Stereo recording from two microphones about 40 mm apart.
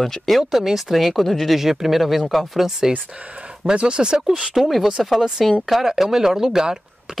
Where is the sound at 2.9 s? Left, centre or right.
Right.